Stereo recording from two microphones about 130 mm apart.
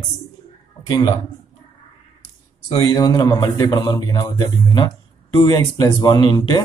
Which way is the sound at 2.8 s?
35° left (ahead or behind).